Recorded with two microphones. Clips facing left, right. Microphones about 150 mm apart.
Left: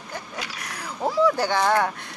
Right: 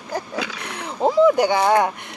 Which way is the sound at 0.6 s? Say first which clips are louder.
Right 6 dB; 25° right (ahead or behind).